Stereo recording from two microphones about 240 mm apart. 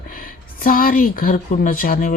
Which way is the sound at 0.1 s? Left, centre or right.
Left.